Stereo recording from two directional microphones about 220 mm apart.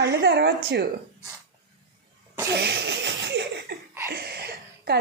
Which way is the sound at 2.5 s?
50° right (ahead or behind).